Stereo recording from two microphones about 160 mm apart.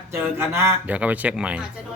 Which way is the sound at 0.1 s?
15° right (ahead or behind).